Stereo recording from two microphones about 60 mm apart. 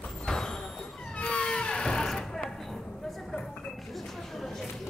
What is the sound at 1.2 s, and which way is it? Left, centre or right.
Music, centre.